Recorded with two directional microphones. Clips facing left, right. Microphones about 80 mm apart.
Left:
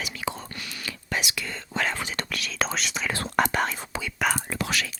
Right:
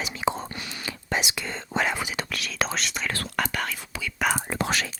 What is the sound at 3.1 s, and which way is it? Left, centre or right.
Speech, left.